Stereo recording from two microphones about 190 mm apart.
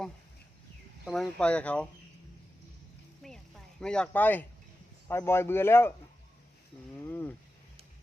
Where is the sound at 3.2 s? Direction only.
Centre (ahead or behind).